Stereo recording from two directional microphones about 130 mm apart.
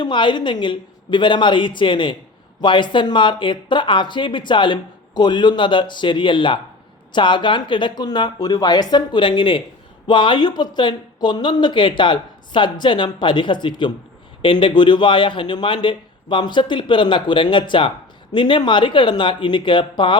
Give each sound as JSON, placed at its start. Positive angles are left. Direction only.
{"t": 0.0, "sound": "a man's voice", "side_deg": 35}